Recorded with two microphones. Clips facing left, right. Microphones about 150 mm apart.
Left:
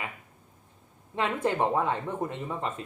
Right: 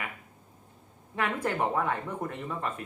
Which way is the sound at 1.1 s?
20° left (ahead or behind).